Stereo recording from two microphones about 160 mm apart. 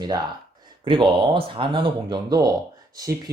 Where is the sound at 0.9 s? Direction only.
35° right (ahead or behind).